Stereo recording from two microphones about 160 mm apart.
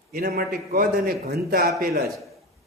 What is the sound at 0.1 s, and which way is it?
A man's voice, 70° right (ahead or behind).